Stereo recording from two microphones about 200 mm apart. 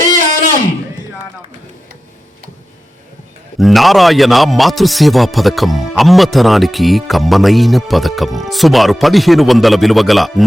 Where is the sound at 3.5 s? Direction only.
Centre (ahead or behind).